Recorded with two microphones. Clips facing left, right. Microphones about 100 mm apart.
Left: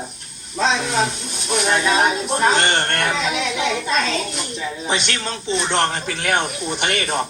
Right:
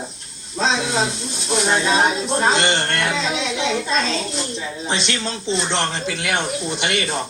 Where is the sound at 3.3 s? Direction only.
25° right (ahead or behind).